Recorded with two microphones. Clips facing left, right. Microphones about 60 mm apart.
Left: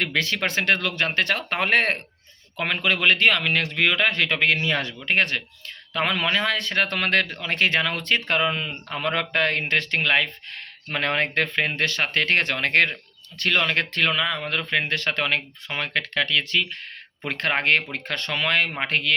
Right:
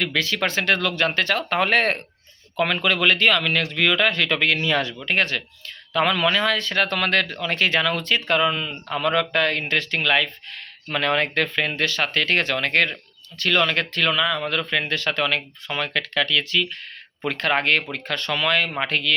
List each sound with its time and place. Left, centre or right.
0.0 s speech: left